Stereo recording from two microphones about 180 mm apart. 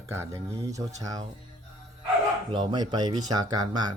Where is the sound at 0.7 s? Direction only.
20° right (ahead or behind).